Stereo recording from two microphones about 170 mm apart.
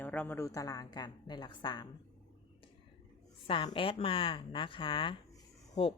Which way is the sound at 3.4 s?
30° left (ahead or behind).